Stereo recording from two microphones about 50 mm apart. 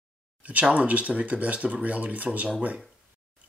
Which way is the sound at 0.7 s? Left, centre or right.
Right.